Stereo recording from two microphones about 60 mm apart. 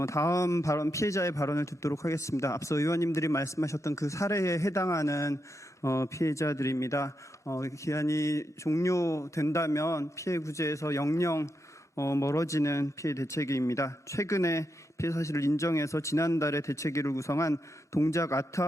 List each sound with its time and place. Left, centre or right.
0.0 s speech: left